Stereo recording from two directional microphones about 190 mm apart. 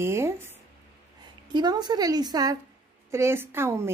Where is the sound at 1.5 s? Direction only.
20° right (ahead or behind).